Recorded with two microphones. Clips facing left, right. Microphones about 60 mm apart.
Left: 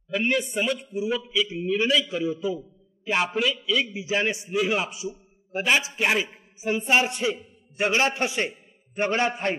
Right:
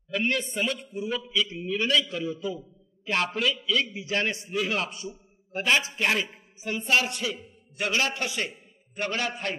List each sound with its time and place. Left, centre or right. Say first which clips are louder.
0.1 s a man's voice: left 3 dB; centre
6.6 s a man's voice: left 3 dB; left